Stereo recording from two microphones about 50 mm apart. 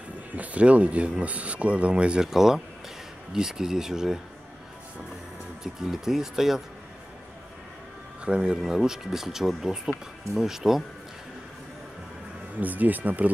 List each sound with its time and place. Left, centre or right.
0.4 s speech: right; by 4.2 s centre
5.6 s speech: centre
8.3 s speech: centre
12.5 s speech: right